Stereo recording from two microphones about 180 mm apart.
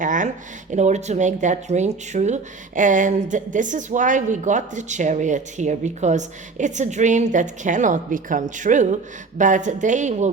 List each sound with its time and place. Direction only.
0.0 s speech: 45° right (ahead or behind)